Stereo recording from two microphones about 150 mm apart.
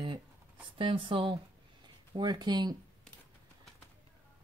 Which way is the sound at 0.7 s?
35° right (ahead or behind).